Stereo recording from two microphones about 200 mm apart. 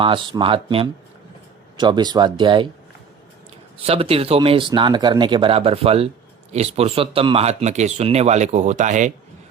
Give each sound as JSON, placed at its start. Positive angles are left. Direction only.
{"t": 0.0, "sound": "speech", "side_deg": -25}
{"t": 3.8, "sound": "speech", "side_deg": -30}